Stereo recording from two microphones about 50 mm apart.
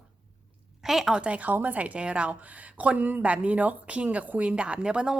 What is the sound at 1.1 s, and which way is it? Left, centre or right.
A woman's voice, right.